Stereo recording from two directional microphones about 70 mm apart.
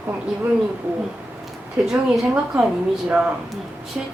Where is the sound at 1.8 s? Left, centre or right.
Centre.